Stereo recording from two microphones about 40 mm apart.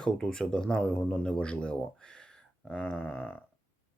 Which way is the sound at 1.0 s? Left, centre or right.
Left.